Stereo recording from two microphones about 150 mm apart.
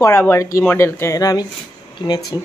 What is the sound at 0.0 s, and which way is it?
Speech, 15° left (ahead or behind).